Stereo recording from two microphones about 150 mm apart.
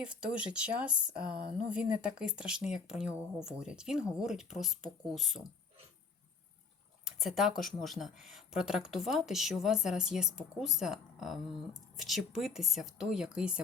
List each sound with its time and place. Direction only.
0.0 s speech: 5° right (ahead or behind)
7.0 s speech: centre (ahead or behind)